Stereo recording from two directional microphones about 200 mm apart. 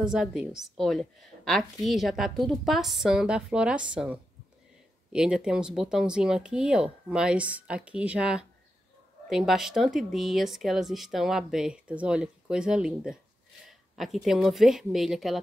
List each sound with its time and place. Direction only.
0.1 s speech: 5° right (ahead or behind)